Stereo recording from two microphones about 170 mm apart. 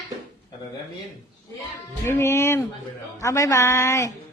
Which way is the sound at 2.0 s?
15° left (ahead or behind).